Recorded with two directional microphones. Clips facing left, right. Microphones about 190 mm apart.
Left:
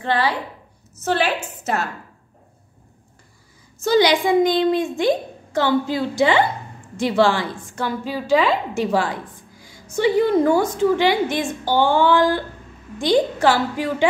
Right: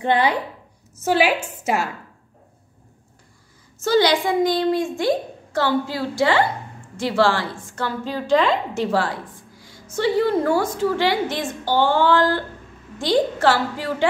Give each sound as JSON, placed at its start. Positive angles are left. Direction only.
{"t": 0.0, "sound": "a woman's voice", "side_deg": -20}
{"t": 3.8, "sound": "a woman's voice", "side_deg": 15}